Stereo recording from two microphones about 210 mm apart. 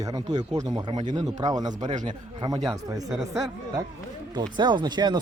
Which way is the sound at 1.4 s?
20° right (ahead or behind).